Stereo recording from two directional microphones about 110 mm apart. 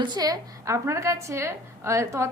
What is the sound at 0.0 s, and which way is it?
A woman's voice, 40° right (ahead or behind).